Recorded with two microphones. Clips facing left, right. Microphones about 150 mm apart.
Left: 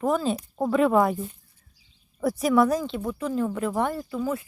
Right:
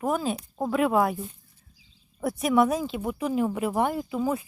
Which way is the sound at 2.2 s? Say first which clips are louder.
Left 3 dB; centre (ahead or behind).